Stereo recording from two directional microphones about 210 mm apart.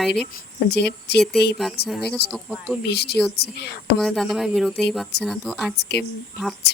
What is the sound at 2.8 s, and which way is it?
A woman's voice, 50° left (ahead or behind).